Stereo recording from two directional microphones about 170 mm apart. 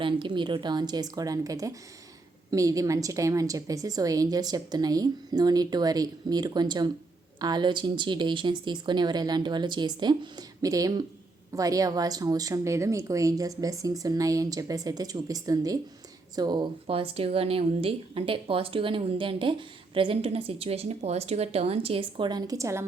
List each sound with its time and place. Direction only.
0.0 s a woman's voice: 30° right (ahead or behind)